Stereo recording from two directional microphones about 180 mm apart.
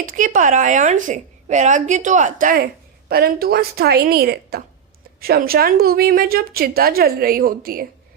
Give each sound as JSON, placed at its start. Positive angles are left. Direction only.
{"t": 0.0, "sound": "a woman's voice", "side_deg": -50}